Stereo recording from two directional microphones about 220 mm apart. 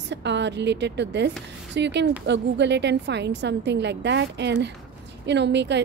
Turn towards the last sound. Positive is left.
turn(degrees=-50)  # may be behind; listen again after turning